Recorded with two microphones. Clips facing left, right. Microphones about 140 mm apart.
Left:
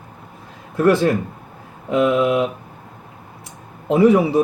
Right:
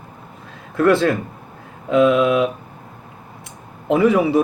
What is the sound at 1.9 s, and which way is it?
Speech, 20° left (ahead or behind).